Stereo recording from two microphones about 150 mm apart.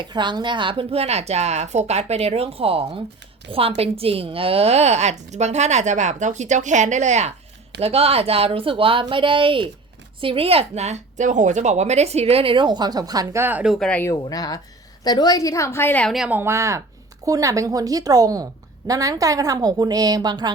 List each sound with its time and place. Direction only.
0.0 s a woman's voice: 30° right (ahead or behind); by 14.0 s 5° left (ahead or behind)
14.2 s a woman's voice: 25° left (ahead or behind)
16.0 s a woman's voice: 5° right (ahead or behind)
16.4 s a woman's voice: 20° right (ahead or behind)